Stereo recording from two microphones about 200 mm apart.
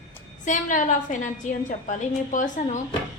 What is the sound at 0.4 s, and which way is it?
A woman's voice, 40° left (ahead or behind).